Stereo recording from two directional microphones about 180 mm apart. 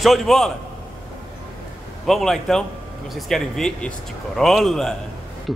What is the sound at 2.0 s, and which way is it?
Speech, centre (ahead or behind).